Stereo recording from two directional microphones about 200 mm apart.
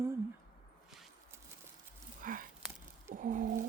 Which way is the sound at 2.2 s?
45° right (ahead or behind).